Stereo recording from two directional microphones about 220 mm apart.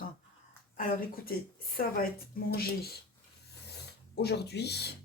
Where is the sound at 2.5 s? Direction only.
45° left (ahead or behind).